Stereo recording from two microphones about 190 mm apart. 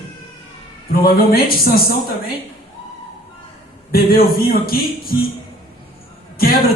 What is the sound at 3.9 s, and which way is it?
A man's voice, 50° left (ahead or behind).